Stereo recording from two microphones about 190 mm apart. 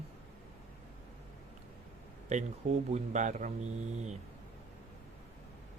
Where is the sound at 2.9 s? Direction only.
40° right (ahead or behind).